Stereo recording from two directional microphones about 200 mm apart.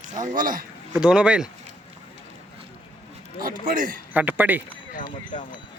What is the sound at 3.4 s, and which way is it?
Speech, 45° right (ahead or behind).